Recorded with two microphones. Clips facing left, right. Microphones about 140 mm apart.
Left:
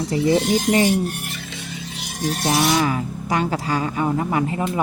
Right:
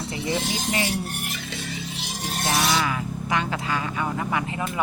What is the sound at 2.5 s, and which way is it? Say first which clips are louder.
Speech: left 4 dB; 30° left (ahead or behind).